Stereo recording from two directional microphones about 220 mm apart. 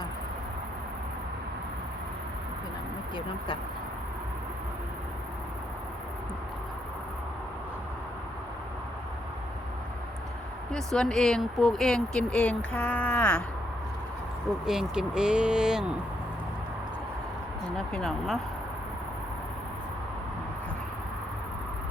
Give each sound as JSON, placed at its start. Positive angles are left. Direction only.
{"t": 3.2, "sound": "speech", "side_deg": 20}
{"t": 10.7, "sound": "speech", "side_deg": 5}
{"t": 14.7, "sound": "speech", "side_deg": -5}
{"t": 17.7, "sound": "speech", "side_deg": 0}